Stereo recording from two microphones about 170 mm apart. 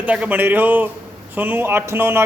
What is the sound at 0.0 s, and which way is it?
Speech, 10° right (ahead or behind).